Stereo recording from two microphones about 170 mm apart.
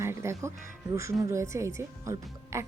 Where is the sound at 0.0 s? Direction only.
15° right (ahead or behind).